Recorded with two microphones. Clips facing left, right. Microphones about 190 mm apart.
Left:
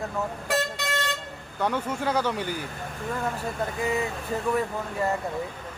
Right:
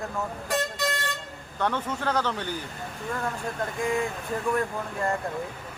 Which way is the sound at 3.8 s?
5° left (ahead or behind).